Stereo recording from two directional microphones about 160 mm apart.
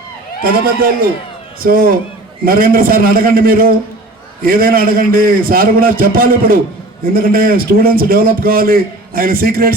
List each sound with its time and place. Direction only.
0.4 s a man's voice: 65° right (ahead or behind)